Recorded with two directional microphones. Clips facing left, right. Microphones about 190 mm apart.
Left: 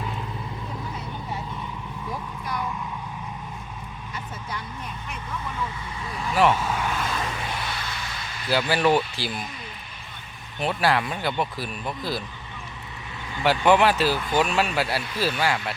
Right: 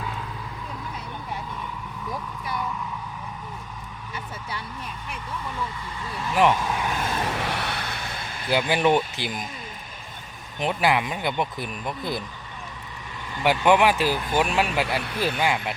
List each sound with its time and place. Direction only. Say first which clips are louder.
6.3 s speech: even; 15° right (ahead or behind)
6.7 s vehicle: even; 10° right (ahead or behind)
7.2 s vehicle: right 3 dB; 65° right (ahead or behind); by 8.4 s 50° right (ahead or behind)
8.4 s speech: even; 15° right (ahead or behind)
10.6 s speech: even; 15° right (ahead or behind)
13.7 s speech: even; 10° right (ahead or behind)